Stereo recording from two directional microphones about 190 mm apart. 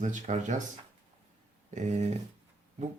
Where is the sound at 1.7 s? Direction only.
35° right (ahead or behind).